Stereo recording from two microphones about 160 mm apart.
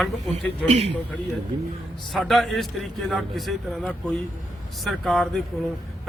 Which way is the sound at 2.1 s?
Centre (ahead or behind).